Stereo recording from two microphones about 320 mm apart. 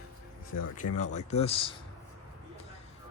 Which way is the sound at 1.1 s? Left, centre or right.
Centre.